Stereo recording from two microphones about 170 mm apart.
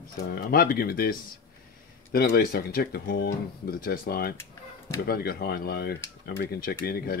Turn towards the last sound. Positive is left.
turn(degrees=60)  # may be behind; listen again after turning